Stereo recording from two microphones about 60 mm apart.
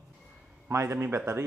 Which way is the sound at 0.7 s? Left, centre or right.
Right.